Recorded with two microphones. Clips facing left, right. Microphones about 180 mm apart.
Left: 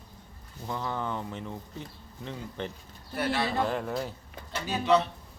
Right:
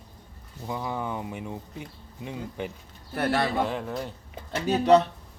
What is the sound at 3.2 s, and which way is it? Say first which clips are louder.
Speech: right 4 dB; 55° right (ahead or behind).